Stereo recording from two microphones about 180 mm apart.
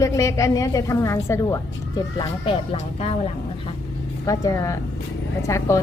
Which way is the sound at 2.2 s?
30° left (ahead or behind).